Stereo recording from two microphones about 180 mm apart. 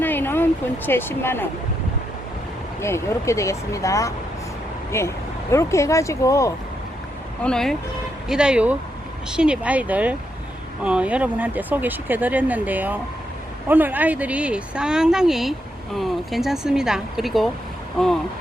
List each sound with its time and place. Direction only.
0.0 s a sound: 10° left (ahead or behind)
0.9 s speech: 10° left (ahead or behind)
2.8 s speech: 15° left (ahead or behind)
7.4 s speech: 5° left (ahead or behind)